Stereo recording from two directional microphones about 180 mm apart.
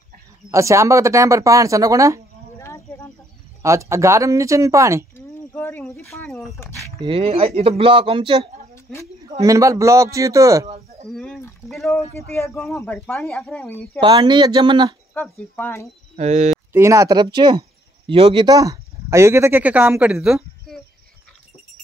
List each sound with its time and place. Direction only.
0.5 s speech: 15° right (ahead or behind)
2.6 s a sound: 15° left (ahead or behind)
3.6 s speech: 15° right (ahead or behind)
5.1 s a sound: 10° left (ahead or behind)
6.2 s speech: centre (ahead or behind)
7.1 s speech: 35° right (ahead or behind)
9.4 s speech: 15° right (ahead or behind)
11.1 s a sound: centre (ahead or behind)
11.7 s speech: centre (ahead or behind)
13.9 s speech: 25° right (ahead or behind)
15.5 s speech: 15° left (ahead or behind)
16.2 s speech: 40° right (ahead or behind)
16.7 s speech: 15° right (ahead or behind); by 20.8 s centre (ahead or behind)